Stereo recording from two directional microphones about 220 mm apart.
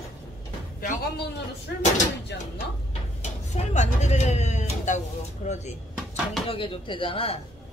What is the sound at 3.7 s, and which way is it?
Speech, 30° left (ahead or behind).